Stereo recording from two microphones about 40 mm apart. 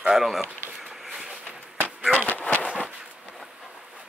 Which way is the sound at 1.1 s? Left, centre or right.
Centre.